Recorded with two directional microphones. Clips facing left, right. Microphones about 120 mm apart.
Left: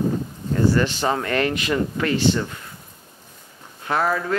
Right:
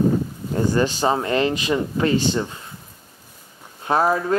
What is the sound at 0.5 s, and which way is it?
Speech, 15° right (ahead or behind).